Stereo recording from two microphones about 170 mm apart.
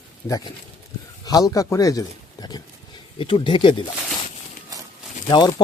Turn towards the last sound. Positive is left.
turn(degrees=25)  # may be behind; listen again after turning